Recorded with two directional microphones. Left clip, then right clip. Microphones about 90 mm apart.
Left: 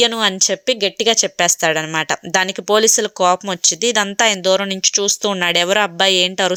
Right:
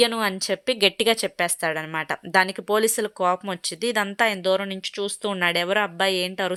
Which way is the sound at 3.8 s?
20° left (ahead or behind).